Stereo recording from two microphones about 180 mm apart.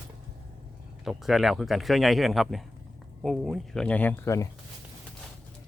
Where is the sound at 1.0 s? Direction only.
Centre (ahead or behind).